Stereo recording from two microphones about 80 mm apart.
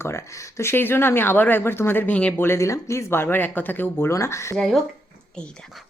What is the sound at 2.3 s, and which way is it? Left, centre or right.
Speech, left.